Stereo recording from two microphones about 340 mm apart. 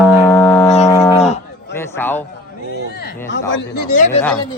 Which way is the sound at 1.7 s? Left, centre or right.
Centre.